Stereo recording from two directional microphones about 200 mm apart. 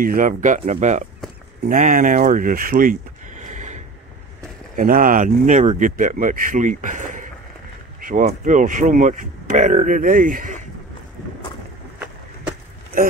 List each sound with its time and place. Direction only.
0.0 s speech: 45° right (ahead or behind)